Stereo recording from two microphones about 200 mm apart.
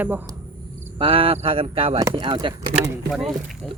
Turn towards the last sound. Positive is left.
turn(degrees=0)  # may be behind; listen again after turning